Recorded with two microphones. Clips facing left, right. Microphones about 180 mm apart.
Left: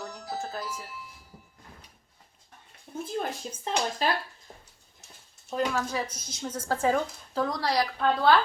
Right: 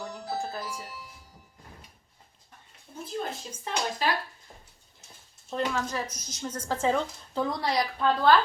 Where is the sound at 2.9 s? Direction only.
65° left (ahead or behind).